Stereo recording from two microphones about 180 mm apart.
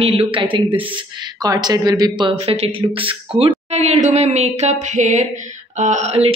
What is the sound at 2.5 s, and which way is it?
A woman's voice, 30° right (ahead or behind).